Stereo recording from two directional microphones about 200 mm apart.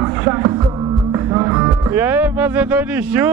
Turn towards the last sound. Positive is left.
turn(degrees=-10)  # may be behind; listen again after turning